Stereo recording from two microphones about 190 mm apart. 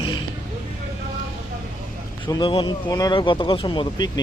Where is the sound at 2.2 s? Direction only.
25° left (ahead or behind).